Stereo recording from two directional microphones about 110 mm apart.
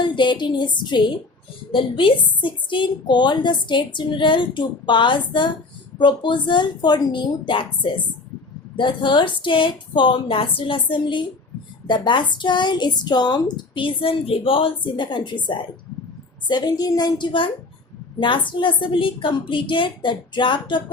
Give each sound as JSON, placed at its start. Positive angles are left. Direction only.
{"t": 0.0, "sound": "a woman's voice", "side_deg": 45}